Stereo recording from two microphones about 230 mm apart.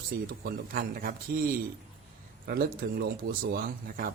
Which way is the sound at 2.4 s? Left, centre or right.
Right.